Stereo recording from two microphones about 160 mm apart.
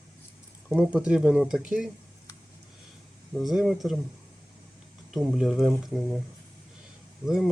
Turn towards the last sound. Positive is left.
turn(degrees=0)  # may be behind; listen again after turning